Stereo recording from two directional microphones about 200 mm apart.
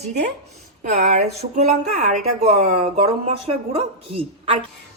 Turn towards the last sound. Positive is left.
turn(degrees=-25)  # may be behind; listen again after turning